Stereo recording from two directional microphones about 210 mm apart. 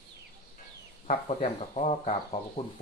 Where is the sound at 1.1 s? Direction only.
30° left (ahead or behind).